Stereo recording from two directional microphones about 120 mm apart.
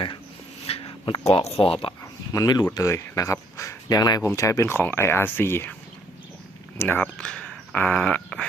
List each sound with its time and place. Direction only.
0.7 s a sound: 55° left (ahead or behind)
1.2 s speech: 60° left (ahead or behind)
2.3 s speech: 35° left (ahead or behind)
6.7 s speech: 15° left (ahead or behind)